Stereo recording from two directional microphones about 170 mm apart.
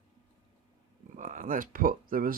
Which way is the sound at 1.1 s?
50° right (ahead or behind).